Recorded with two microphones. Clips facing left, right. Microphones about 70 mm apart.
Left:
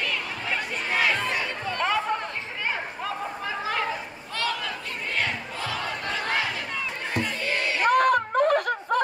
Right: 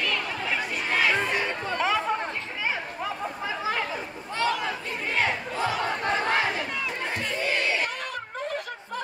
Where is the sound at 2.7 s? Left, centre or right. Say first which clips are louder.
Left 1 dB; centre.